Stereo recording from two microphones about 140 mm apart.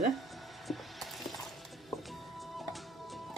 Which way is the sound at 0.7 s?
Centre (ahead or behind).